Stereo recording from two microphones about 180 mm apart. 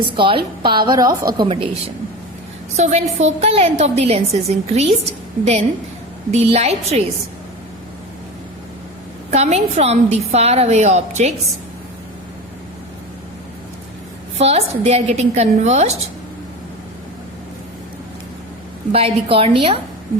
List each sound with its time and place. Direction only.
0.0 s a woman's voice: 30° right (ahead or behind)
2.7 s a woman's voice: 40° right (ahead or behind)
6.3 s a woman's voice: 35° right (ahead or behind)
9.3 s a woman's voice: 35° right (ahead or behind)
14.3 s a woman's voice: 35° right (ahead or behind)
18.9 s a woman's voice: 35° right (ahead or behind)